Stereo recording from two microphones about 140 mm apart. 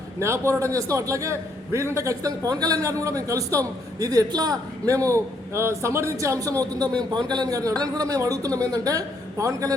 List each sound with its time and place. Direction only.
0.2 s a man's voice: 20° right (ahead or behind)